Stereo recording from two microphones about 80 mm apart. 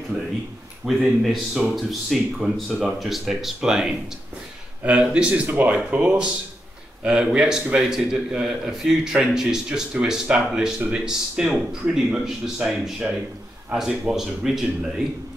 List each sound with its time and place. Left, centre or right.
0.8 s speech: centre
5.0 s a man's voice: centre
5.5 s a man's voice: right; by 14.9 s centre